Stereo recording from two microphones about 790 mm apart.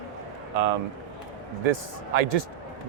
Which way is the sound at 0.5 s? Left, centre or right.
Right.